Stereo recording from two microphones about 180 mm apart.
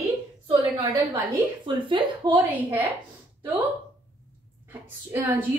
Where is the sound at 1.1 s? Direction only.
25° right (ahead or behind).